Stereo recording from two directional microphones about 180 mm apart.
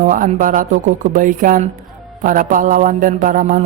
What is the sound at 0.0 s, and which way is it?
Speech, 45° right (ahead or behind).